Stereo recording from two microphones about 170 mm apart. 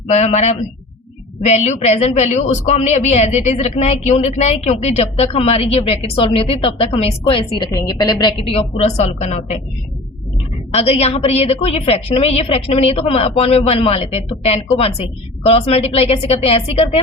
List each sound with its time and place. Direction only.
0.1 s a woman's voice: 40° left (ahead or behind)
10.7 s a woman's voice: 40° left (ahead or behind)